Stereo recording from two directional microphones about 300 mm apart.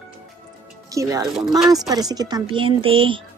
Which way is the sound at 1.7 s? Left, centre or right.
Centre.